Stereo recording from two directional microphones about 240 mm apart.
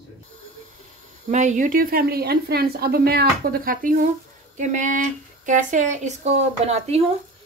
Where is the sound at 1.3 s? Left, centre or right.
Right.